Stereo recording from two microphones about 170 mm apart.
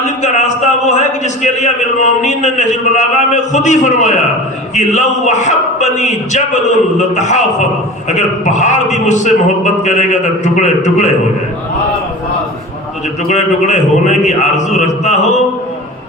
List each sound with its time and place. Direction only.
0.0 s a man's voice: 45° left (ahead or behind)
13.2 s a man's voice: 45° left (ahead or behind)